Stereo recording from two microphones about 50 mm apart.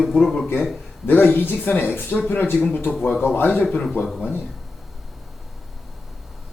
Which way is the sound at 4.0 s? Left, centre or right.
Centre.